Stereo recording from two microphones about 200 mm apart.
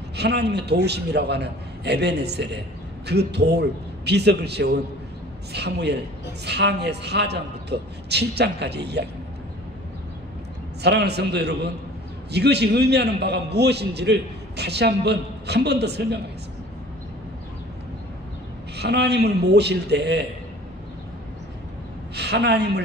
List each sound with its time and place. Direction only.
0.1 s a man's voice: 55° right (ahead or behind)
10.8 s a man's voice: 55° right (ahead or behind)
18.8 s a man's voice: 55° right (ahead or behind)
22.1 s a woman's voice: 55° right (ahead or behind)